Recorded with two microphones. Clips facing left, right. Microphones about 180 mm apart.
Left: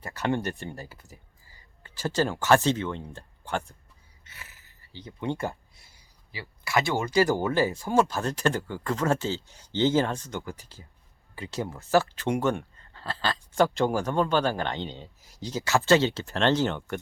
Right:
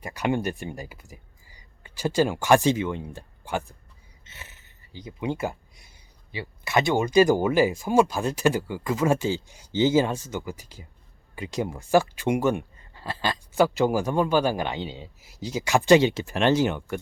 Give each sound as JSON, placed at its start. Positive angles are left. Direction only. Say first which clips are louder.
{"t": 0.0, "sound": "speech", "louder": "right 2 dB", "side_deg": -15}
{"t": 4.3, "sound": "a sound", "louder": "right 3 dB", "side_deg": -25}
{"t": 4.9, "sound": "speech", "louder": "right 2 dB", "side_deg": -10}